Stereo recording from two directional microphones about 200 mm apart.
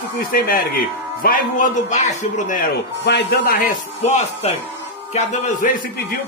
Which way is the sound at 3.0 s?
55° left (ahead or behind).